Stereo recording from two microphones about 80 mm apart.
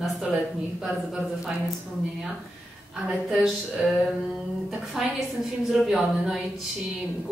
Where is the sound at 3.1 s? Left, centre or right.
Centre.